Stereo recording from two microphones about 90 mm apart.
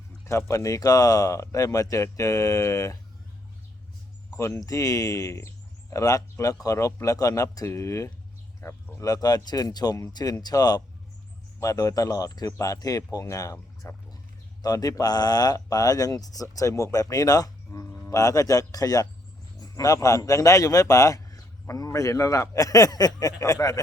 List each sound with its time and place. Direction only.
0.3 s speech: 35° left (ahead or behind)
4.4 s speech: 35° left (ahead or behind)